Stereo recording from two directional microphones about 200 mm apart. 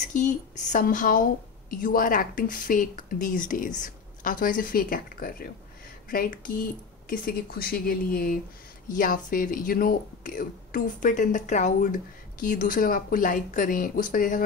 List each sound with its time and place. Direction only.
0.1 s speech: 40° left (ahead or behind)